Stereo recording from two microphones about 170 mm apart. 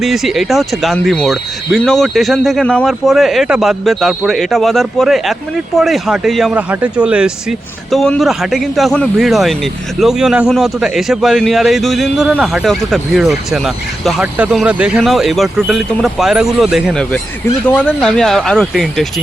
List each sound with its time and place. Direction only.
0.0 s a man's voice: centre (ahead or behind)